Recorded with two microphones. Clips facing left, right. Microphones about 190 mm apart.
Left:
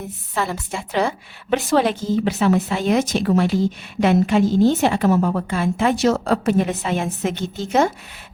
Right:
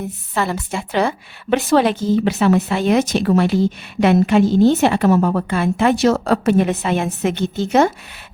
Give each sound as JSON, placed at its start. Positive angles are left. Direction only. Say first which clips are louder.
{"t": 0.3, "sound": "a woman's voice", "louder": "right 3 dB", "side_deg": -70}